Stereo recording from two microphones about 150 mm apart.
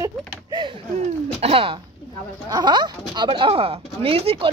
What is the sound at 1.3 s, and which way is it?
Speech, 40° right (ahead or behind).